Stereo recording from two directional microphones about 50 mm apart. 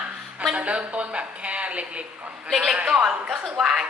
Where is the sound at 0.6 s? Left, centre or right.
Right.